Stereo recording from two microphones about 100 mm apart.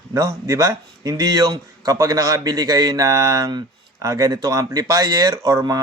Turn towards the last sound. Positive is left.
turn(degrees=-35)  # may be behind; listen again after turning